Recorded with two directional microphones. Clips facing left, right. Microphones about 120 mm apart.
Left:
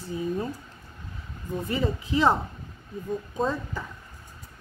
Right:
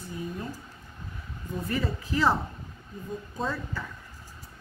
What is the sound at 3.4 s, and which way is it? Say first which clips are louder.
Speech: left 3 dB; 20° left (ahead or behind).